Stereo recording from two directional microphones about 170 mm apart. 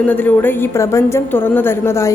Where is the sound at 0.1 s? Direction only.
10° left (ahead or behind).